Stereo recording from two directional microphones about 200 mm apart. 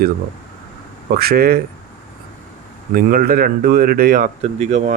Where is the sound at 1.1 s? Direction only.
50° right (ahead or behind).